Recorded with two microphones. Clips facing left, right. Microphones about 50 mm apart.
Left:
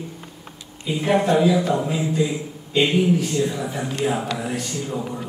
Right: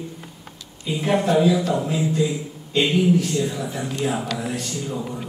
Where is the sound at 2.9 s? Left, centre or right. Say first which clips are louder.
Even; centre.